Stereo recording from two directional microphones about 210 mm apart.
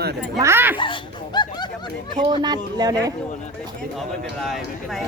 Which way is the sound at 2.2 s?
20° right (ahead or behind).